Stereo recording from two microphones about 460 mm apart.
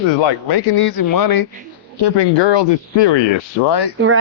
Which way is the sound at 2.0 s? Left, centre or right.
Left.